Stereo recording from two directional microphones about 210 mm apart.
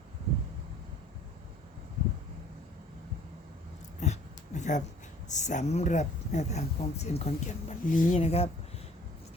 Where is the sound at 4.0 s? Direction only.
35° left (ahead or behind).